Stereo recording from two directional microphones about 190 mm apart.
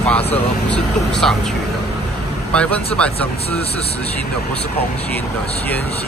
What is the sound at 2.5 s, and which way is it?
Speech, 5° left (ahead or behind).